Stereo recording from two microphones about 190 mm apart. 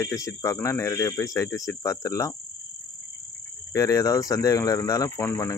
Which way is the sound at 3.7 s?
20° left (ahead or behind).